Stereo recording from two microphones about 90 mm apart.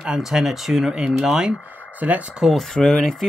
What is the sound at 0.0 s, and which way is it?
Speech, 5° right (ahead or behind).